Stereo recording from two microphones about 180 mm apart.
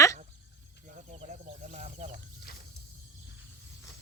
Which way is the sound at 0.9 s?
45° right (ahead or behind).